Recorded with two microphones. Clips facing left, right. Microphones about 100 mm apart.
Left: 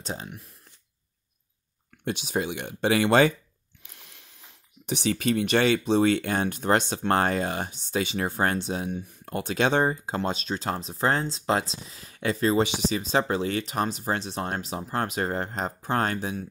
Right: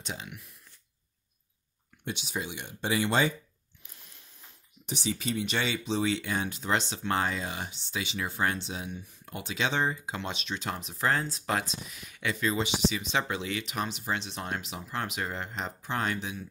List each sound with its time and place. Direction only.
0.0 s speech: 40° left (ahead or behind)
2.0 s speech: 55° left (ahead or behind)
3.8 s a sound: 80° left
4.8 s speech: 65° left (ahead or behind); by 16.4 s 45° left (ahead or behind)